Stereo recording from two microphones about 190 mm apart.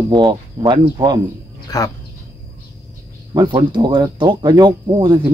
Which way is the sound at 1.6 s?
20° left (ahead or behind).